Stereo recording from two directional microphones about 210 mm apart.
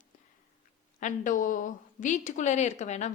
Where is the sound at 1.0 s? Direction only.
35° left (ahead or behind).